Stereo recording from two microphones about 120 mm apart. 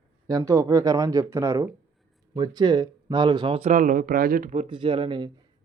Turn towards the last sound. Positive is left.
turn(degrees=-45)  # may be behind; listen again after turning